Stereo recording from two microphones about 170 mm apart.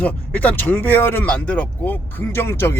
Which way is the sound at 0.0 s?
10° left (ahead or behind).